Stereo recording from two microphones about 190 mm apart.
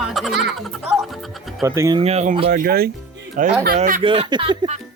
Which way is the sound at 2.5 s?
50° right (ahead or behind).